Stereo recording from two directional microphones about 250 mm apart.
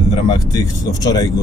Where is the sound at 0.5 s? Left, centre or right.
Centre.